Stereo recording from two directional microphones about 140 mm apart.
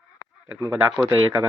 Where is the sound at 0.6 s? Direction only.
20° right (ahead or behind).